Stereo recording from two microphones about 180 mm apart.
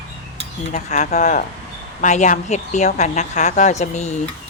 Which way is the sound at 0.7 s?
40° left (ahead or behind).